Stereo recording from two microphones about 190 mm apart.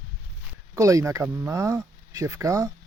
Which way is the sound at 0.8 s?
15° right (ahead or behind).